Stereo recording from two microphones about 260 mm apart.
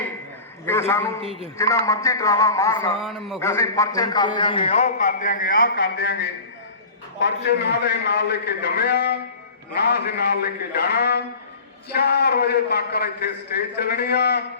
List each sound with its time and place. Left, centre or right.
0.6 s a man's voice: centre
1.2 s a man's voice: centre
1.5 s a man's voice: centre
3.0 s a man's voice: centre
3.4 s a man's voice: centre; by 14.4 s left